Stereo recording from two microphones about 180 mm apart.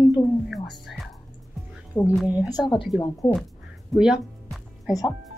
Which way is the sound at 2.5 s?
25° left (ahead or behind).